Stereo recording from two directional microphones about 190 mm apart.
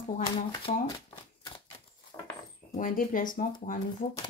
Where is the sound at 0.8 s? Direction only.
25° left (ahead or behind).